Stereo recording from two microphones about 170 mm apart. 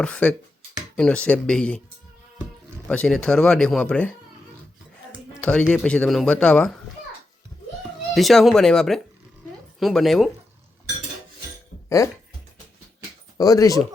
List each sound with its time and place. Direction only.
0.0 s speech: 10° left (ahead or behind)
2.8 s speech: 5° left (ahead or behind)
5.4 s speech: 5° left (ahead or behind)
8.1 s speech: centre (ahead or behind)
13.3 s speech: 20° left (ahead or behind)